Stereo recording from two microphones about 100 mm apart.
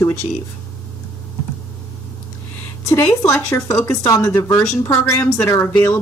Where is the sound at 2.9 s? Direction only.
25° left (ahead or behind).